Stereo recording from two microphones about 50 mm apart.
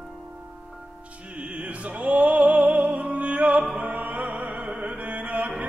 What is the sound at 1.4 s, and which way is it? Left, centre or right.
Opera, right.